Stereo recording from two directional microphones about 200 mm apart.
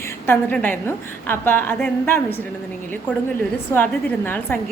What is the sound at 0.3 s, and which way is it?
A woman's voice, 10° left (ahead or behind).